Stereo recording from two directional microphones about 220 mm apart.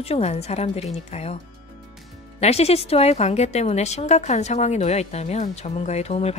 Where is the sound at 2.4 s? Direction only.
30° left (ahead or behind).